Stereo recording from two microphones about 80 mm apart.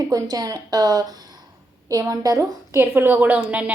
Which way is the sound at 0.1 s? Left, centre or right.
Right.